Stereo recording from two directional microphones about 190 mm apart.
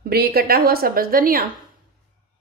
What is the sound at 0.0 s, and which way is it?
Speech, 55° right (ahead or behind).